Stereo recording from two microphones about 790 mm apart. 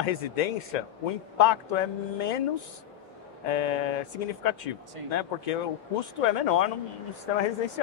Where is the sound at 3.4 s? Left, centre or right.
Left.